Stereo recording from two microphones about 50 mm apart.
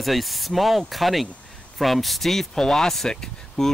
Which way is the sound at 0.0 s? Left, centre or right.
Centre.